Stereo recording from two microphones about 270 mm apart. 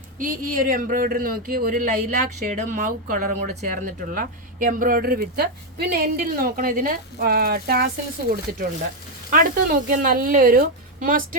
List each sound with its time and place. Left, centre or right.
0.2 s speech: right
9.3 s speech: right